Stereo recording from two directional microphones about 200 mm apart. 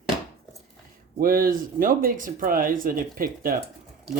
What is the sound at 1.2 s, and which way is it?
Speech, 45° right (ahead or behind).